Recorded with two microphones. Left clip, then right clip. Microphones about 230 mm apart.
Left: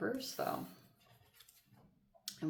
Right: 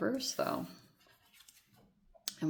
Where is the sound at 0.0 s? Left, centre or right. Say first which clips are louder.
Right 4 dB; right.